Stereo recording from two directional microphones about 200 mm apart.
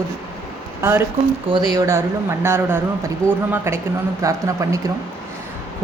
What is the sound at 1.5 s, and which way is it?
Speech, 20° right (ahead or behind).